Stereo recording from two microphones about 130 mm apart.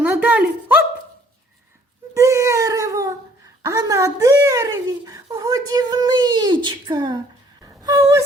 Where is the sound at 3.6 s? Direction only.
25° right (ahead or behind).